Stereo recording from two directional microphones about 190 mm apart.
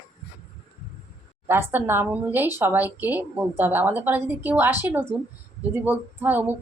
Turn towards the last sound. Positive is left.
turn(degrees=-10)  # may be behind; listen again after turning